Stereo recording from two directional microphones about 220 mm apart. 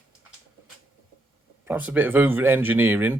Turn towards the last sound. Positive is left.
turn(degrees=-10)  # may be behind; listen again after turning